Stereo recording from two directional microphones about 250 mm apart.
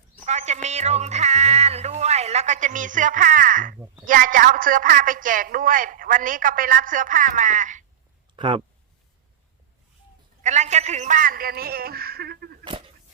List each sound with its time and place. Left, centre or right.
0.3 s a woman's voice: right
10.4 s a woman's voice: right